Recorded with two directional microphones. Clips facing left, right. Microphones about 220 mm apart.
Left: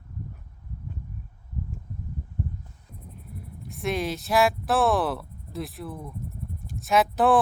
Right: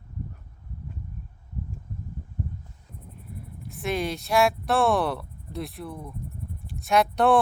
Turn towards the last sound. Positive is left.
turn(degrees=0)  # may be behind; listen again after turning